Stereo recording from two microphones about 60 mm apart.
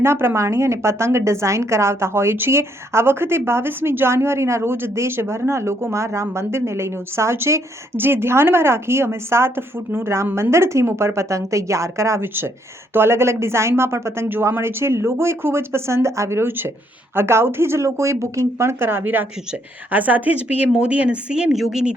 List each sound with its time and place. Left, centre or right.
0.0 s a woman's voice: right
12.2 s a woman's voice: right; by 21.5 s centre
21.5 s speech: centre